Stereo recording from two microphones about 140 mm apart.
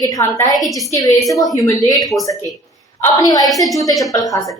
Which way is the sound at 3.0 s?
25° left (ahead or behind).